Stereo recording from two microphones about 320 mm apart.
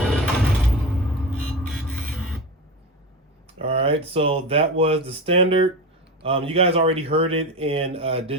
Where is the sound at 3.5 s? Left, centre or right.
Centre.